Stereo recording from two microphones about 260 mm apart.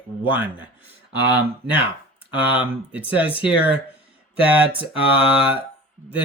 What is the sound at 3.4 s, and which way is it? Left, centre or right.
Speech, centre.